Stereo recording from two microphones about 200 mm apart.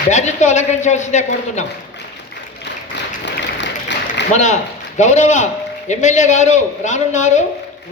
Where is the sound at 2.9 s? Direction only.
60° left (ahead or behind).